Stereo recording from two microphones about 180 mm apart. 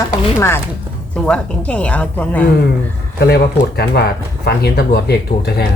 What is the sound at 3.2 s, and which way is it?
Speech, 60° left (ahead or behind).